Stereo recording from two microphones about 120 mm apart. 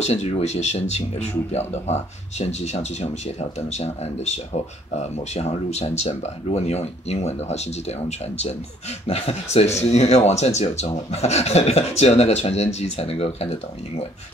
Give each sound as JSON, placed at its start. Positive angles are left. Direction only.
{"t": 0.0, "sound": "speech", "side_deg": 65}
{"t": 9.0, "sound": "speech", "side_deg": 65}